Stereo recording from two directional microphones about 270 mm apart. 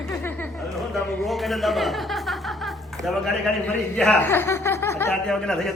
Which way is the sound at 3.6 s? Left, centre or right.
Centre.